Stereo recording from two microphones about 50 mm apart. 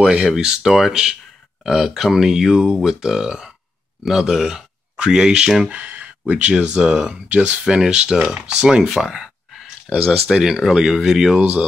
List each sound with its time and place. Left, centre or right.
0.0 s speech: centre
5.7 s a sound: right
6.5 s speech: centre
7.6 s speech: centre